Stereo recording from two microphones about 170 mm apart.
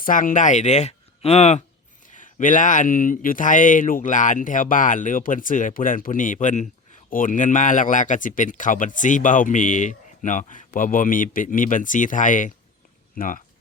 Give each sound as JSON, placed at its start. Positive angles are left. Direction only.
{"t": 0.0, "sound": "speech", "side_deg": 50}